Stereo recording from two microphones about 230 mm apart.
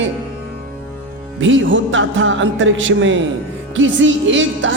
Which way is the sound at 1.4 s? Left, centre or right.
Right.